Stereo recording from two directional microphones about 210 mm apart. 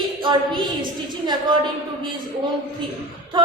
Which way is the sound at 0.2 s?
20° right (ahead or behind).